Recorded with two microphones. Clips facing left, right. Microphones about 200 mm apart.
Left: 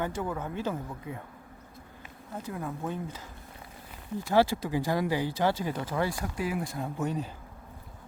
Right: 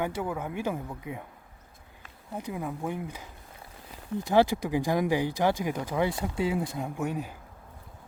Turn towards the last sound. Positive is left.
turn(degrees=-10)  # may be behind; listen again after turning